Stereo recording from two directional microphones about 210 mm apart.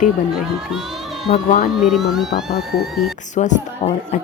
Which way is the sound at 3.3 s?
35° left (ahead or behind).